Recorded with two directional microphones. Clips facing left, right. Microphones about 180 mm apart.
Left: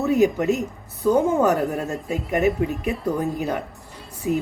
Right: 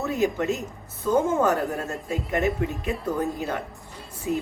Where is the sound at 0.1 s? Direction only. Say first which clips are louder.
Left 6 dB; 15° left (ahead or behind).